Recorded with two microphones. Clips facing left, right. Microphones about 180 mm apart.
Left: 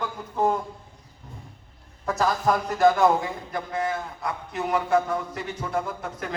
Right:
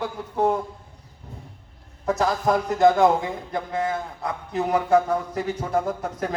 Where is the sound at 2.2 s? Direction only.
20° right (ahead or behind).